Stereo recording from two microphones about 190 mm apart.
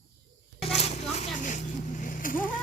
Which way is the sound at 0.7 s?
35° left (ahead or behind).